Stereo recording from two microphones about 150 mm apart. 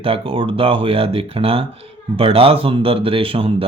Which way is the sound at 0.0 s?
35° right (ahead or behind).